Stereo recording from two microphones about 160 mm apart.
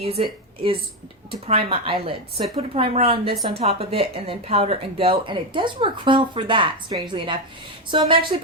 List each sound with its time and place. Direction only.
0.0 s speech: 35° right (ahead or behind)